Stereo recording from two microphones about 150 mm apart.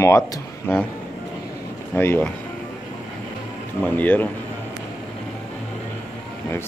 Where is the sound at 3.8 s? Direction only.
10° left (ahead or behind).